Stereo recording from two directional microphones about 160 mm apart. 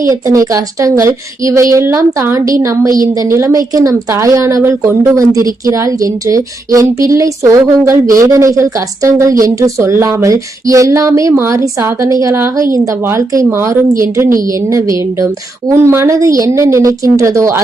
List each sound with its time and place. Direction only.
0.1 s speech: 20° right (ahead or behind)